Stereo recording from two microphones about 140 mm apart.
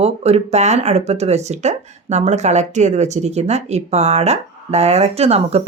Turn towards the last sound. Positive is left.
turn(degrees=-50)  # may be behind; listen again after turning